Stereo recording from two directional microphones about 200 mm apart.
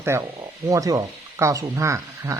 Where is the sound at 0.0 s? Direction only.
15° right (ahead or behind).